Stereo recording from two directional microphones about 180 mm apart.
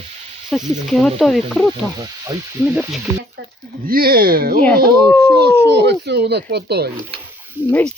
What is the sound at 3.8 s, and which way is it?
Speech, 55° right (ahead or behind).